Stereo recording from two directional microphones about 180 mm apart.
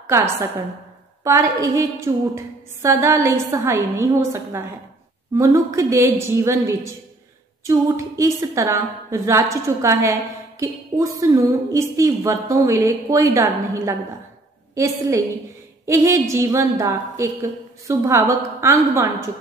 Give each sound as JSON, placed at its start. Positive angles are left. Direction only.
{"t": 0.0, "sound": "a woman's voice", "side_deg": -15}